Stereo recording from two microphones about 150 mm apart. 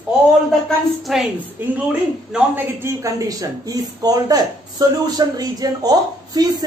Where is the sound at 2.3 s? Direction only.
15° right (ahead or behind).